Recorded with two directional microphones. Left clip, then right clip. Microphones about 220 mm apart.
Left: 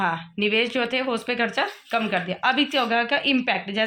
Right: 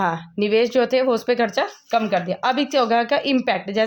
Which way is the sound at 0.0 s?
45° right (ahead or behind).